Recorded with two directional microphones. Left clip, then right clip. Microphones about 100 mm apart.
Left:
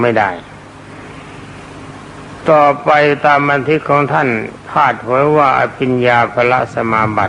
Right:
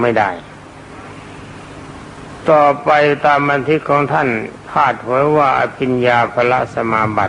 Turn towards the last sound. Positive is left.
turn(degrees=30)  # may be behind; listen again after turning